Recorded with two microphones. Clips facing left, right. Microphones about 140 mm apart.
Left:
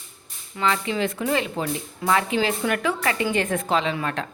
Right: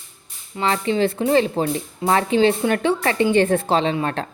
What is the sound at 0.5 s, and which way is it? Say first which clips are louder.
A woman's voice: right 4 dB; 35° right (ahead or behind).